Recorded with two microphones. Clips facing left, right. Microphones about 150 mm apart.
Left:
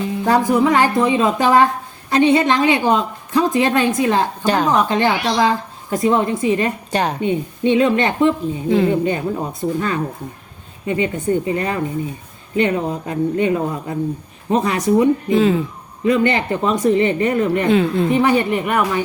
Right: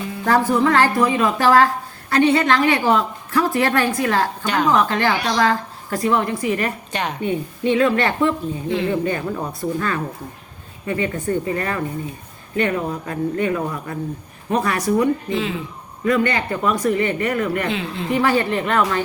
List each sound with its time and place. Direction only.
0.3 s a woman's voice: 15° left (ahead or behind)
4.4 s speech: 35° left (ahead or behind)
4.7 s a woman's voice: 20° left (ahead or behind)
6.9 s speech: 35° left (ahead or behind)
7.2 s a woman's voice: 20° left (ahead or behind)
15.3 s speech: 40° left (ahead or behind)
16.0 s a woman's voice: 25° left (ahead or behind)
17.7 s a woman's voice: 45° left (ahead or behind)
18.1 s a woman's voice: 20° left (ahead or behind)